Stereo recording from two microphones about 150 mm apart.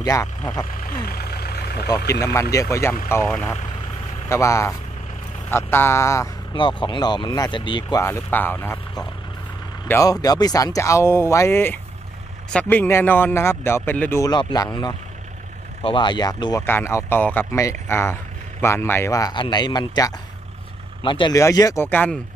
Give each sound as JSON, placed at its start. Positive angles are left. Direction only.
{"t": 0.0, "sound": "speech", "side_deg": 20}
{"t": 1.0, "sound": "vehicle", "side_deg": 90}
{"t": 2.0, "sound": "speech", "side_deg": 20}
{"t": 6.5, "sound": "speech", "side_deg": 30}
{"t": 8.0, "sound": "speech", "side_deg": 15}
{"t": 9.8, "sound": "speech", "side_deg": 20}
{"t": 14.3, "sound": "speech", "side_deg": 30}
{"t": 16.6, "sound": "speech", "side_deg": 15}
{"t": 21.4, "sound": "speech", "side_deg": 20}